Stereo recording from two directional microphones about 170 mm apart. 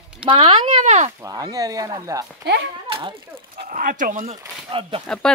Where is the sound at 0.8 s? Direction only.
45° right (ahead or behind).